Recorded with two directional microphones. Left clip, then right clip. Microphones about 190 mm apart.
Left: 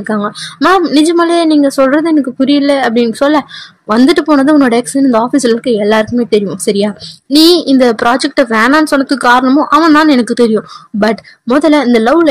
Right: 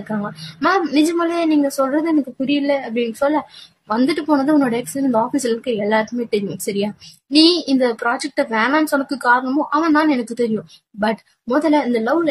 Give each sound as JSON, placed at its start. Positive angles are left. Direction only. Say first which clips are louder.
{"t": 0.2, "sound": "a woman's voice", "louder": "left 6 dB", "side_deg": 35}